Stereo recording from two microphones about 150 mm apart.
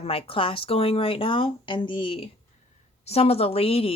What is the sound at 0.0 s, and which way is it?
Speech, 40° left (ahead or behind).